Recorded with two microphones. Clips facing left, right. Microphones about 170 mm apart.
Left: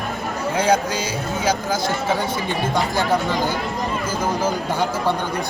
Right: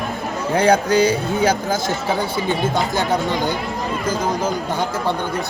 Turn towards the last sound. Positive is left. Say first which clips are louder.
# right 1 dB
turn(degrees=10)  # may be behind; listen again after turning